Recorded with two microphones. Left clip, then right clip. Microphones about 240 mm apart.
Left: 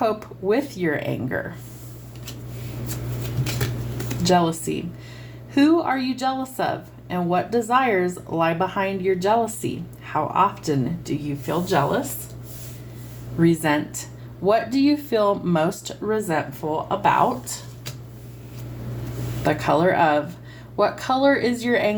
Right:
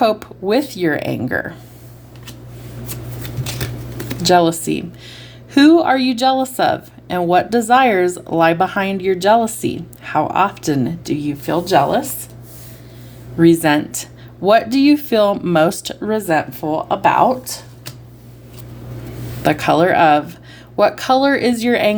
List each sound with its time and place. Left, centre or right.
0.0 s speech: right
4.3 s speech: right
13.4 s speech: right
19.4 s speech: right